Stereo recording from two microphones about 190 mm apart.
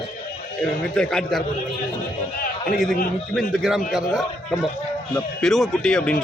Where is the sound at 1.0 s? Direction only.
5° left (ahead or behind).